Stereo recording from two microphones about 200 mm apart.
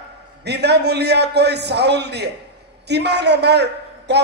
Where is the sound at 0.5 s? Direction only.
55° right (ahead or behind).